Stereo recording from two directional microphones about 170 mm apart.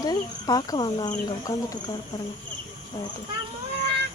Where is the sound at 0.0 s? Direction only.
20° left (ahead or behind).